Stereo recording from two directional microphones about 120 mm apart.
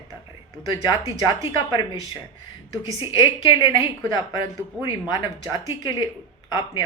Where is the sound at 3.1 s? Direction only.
40° left (ahead or behind).